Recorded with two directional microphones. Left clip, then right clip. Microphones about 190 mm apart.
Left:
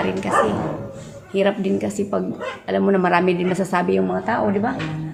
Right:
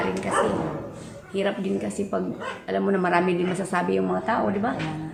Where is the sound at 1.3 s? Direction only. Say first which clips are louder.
Left 6 dB; 20° left (ahead or behind).